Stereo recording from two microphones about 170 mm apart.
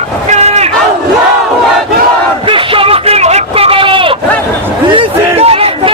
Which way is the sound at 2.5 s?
30° right (ahead or behind).